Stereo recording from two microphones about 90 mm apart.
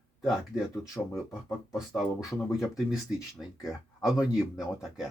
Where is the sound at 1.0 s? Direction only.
15° left (ahead or behind).